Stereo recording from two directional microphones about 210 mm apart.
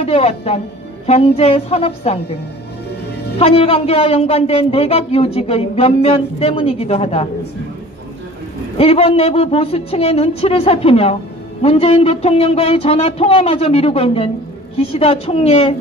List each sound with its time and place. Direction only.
0.0 s music: 30° left (ahead or behind)
1.0 s a man's voice: 30° left (ahead or behind)
3.3 s a man's voice: 30° left (ahead or behind)
8.7 s a man's voice: 30° left (ahead or behind)